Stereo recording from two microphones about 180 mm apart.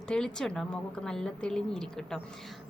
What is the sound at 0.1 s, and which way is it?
A woman's voice, 5° left (ahead or behind).